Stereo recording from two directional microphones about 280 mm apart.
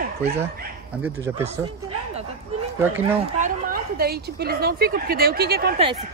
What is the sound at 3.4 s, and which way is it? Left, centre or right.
A woman's voice, right.